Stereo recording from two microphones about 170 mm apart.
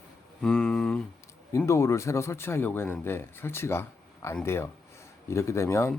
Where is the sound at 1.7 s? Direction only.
15° left (ahead or behind).